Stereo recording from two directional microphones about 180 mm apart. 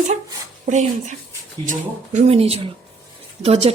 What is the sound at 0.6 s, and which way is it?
Speech, 45° right (ahead or behind).